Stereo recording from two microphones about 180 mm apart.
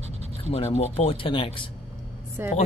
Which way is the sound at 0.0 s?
35° right (ahead or behind).